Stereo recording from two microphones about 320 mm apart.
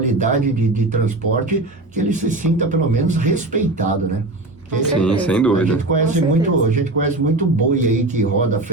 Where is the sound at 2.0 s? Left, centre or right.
Right.